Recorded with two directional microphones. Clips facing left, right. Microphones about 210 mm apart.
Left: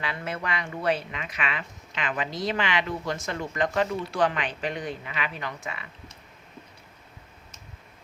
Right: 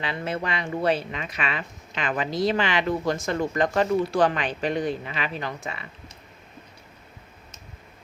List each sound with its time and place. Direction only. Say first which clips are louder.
0.0 s speech: right 4 dB; 25° right (ahead or behind)